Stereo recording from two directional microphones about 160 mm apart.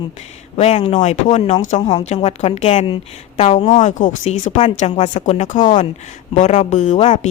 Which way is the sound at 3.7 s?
50° left (ahead or behind).